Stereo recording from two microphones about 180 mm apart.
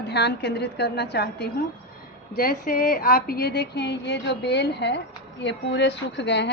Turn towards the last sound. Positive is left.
turn(degrees=75)  # may be behind; listen again after turning